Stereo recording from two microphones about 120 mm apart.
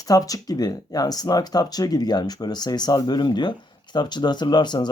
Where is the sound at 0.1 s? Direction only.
30° left (ahead or behind).